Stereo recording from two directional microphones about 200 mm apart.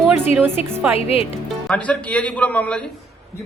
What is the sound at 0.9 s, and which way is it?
Speech, 30° left (ahead or behind).